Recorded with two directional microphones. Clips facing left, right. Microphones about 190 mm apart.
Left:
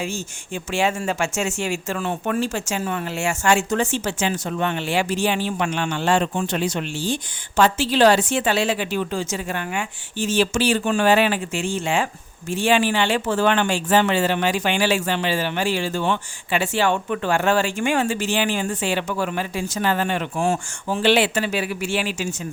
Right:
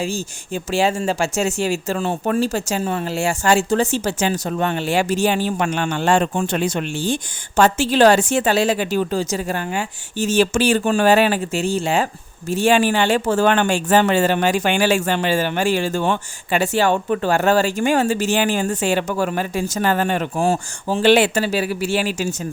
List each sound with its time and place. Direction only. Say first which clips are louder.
0.0 s speech: right 4 dB; 35° right (ahead or behind)